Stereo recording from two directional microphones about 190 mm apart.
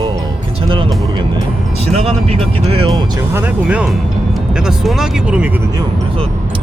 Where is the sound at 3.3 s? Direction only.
5° right (ahead or behind).